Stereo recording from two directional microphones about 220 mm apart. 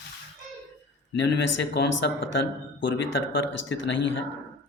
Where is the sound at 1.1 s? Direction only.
55° left (ahead or behind).